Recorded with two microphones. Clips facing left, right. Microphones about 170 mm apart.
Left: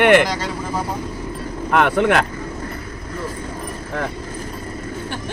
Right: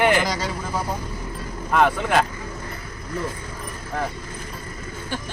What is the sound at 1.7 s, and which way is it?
Speech, 70° left (ahead or behind).